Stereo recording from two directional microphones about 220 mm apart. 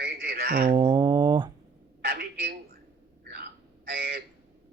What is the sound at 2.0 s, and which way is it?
Speech, 45° right (ahead or behind).